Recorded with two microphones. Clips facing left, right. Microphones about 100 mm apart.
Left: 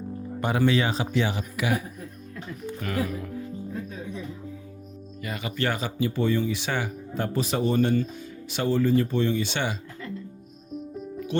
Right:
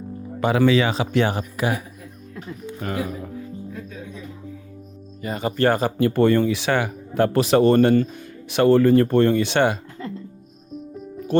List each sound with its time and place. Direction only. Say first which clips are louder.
0.3 s speech: right 6 dB; 90° right; by 1.7 s 45° right (ahead or behind)
2.8 s speech: right 2 dB; 30° right (ahead or behind)
5.2 s speech: right 8 dB; 35° right (ahead or behind)
6.0 s speech: right 6 dB; 60° right (ahead or behind)